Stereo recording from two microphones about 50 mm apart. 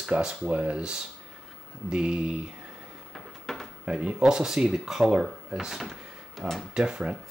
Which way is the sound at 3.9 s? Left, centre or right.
Centre.